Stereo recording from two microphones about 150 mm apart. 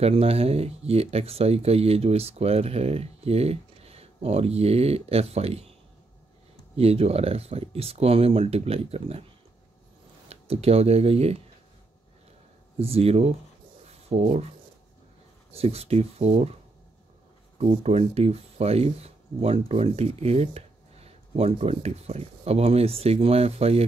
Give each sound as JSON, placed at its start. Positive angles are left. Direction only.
{"t": 0.0, "sound": "speech", "side_deg": -40}
{"t": 6.8, "sound": "speech", "side_deg": -45}
{"t": 10.2, "sound": "speech", "side_deg": -45}
{"t": 12.7, "sound": "speech", "side_deg": -40}
{"t": 13.8, "sound": "writing", "side_deg": -45}
{"t": 15.5, "sound": "speech", "side_deg": -40}
{"t": 17.6, "sound": "speech", "side_deg": -40}